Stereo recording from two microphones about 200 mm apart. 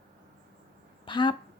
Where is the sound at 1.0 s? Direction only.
25° left (ahead or behind).